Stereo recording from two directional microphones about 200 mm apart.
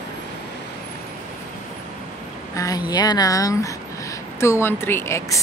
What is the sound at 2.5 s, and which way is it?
Speech, 20° left (ahead or behind).